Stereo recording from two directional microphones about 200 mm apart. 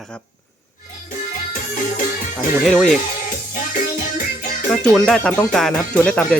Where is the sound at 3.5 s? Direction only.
45° left (ahead or behind).